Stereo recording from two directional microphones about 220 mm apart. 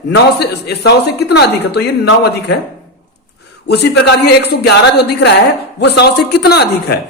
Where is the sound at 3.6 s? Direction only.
50° left (ahead or behind).